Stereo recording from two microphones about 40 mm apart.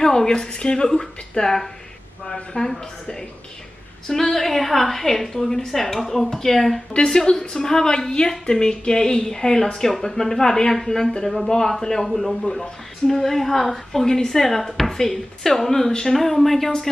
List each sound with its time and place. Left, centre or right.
0.0 s a woman's voice: centre
4.1 s a woman's voice: centre
7.2 s a woman's voice: centre